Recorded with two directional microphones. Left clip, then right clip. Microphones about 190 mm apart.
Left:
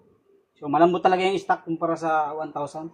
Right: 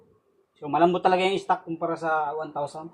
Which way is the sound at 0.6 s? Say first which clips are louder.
Left 2 dB; 40° left (ahead or behind).